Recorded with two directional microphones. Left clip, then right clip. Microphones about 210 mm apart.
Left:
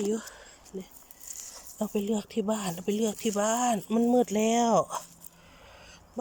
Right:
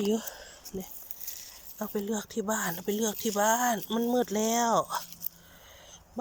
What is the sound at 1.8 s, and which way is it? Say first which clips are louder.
Speech: left 3 dB; 5° left (ahead or behind).